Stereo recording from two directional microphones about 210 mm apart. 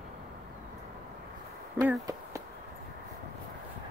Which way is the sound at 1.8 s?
15° right (ahead or behind).